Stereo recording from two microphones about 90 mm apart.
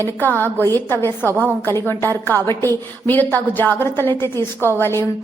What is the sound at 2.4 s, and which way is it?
Speech, 35° left (ahead or behind).